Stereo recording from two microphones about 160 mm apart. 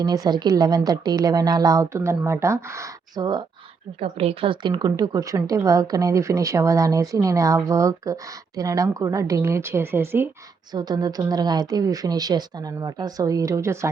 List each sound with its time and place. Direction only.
0.0 s a woman's voice: 25° right (ahead or behind)
4.0 s a woman's voice: 35° right (ahead or behind); by 10.2 s 15° right (ahead or behind)
10.7 s a woman's voice: 25° right (ahead or behind)